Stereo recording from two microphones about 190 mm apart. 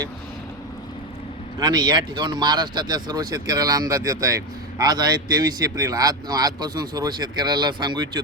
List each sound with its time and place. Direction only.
1.5 s speech: 20° right (ahead or behind)